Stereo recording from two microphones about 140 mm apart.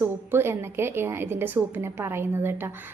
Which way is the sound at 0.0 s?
15° right (ahead or behind).